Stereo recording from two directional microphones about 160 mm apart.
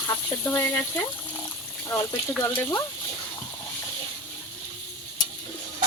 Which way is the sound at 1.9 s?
15° left (ahead or behind).